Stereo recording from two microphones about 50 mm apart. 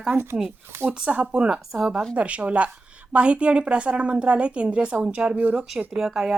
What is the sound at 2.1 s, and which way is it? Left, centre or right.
A woman's voice, right.